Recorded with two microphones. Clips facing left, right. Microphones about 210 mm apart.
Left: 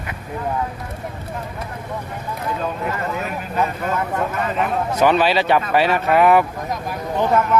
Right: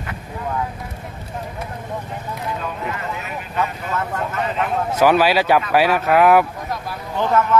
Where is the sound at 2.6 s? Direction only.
45° left (ahead or behind).